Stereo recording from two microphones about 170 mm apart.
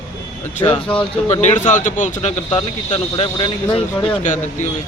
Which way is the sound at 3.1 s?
30° left (ahead or behind).